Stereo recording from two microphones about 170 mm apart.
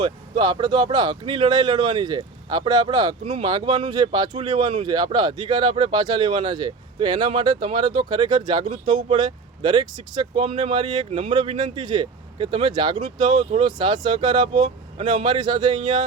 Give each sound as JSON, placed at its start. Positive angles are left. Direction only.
{"t": 0.0, "sound": "speech", "side_deg": -25}